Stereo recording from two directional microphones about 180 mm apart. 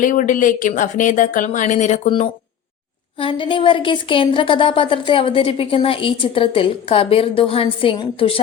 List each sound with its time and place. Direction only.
0.0 s speech: 50° left (ahead or behind)
3.2 s speech: 30° left (ahead or behind)